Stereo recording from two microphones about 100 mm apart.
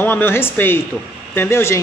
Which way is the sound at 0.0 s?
20° left (ahead or behind).